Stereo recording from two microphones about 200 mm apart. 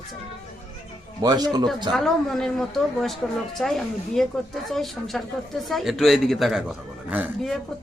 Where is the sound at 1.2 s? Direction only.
20° right (ahead or behind).